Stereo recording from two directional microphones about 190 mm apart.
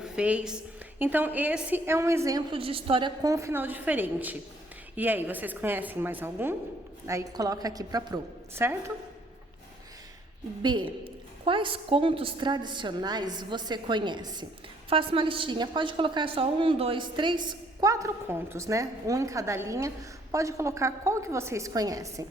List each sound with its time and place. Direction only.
0.0 s a woman's voice: 5° right (ahead or behind); by 3.1 s 30° right (ahead or behind)
3.2 s a woman's voice: 15° right (ahead or behind)
10.6 s a woman's voice: 25° right (ahead or behind)